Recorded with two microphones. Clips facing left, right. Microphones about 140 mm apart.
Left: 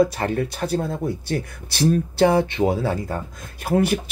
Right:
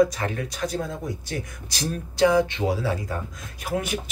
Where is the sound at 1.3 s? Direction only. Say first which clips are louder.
Left 6 dB; 65° left (ahead or behind).